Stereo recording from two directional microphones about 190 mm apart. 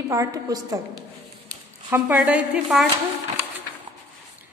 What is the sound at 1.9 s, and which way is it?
Speech, 10° right (ahead or behind).